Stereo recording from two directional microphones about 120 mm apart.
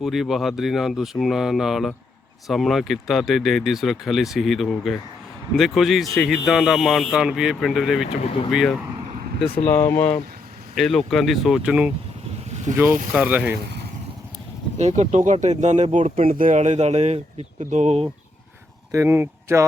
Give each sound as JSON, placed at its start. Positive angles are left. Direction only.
{"t": 0.0, "sound": "speech", "side_deg": 0}
{"t": 9.6, "sound": "speech", "side_deg": 15}
{"t": 10.8, "sound": "speech", "side_deg": 0}
{"t": 12.7, "sound": "speech", "side_deg": -20}
{"t": 14.8, "sound": "speech", "side_deg": -75}
{"t": 18.9, "sound": "speech", "side_deg": -20}